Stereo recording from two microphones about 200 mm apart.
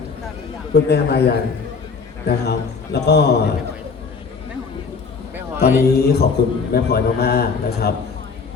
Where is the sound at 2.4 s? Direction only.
55° left (ahead or behind).